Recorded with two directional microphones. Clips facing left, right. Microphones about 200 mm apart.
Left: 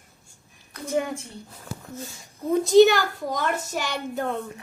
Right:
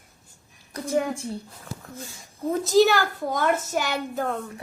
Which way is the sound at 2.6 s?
Centre (ahead or behind).